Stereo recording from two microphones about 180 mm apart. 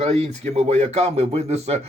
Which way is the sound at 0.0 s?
35° right (ahead or behind).